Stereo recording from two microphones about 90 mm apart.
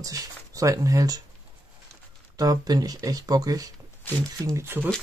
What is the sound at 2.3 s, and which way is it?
Speech, 45° right (ahead or behind).